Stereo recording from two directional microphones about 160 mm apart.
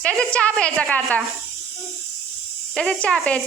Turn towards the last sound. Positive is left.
turn(degrees=5)  # may be behind; listen again after turning